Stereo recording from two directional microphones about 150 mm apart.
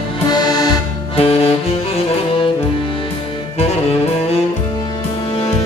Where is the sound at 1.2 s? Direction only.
40° left (ahead or behind).